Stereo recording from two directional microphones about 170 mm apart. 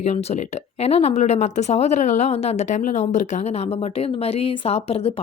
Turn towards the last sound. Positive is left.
turn(degrees=35)  # may be behind; listen again after turning